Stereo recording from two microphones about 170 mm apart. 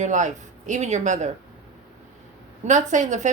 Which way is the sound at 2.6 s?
45° right (ahead or behind).